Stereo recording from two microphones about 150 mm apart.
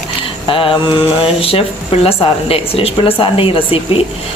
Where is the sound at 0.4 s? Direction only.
35° left (ahead or behind).